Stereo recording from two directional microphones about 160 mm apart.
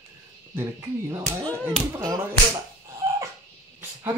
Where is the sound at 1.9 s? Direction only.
20° right (ahead or behind).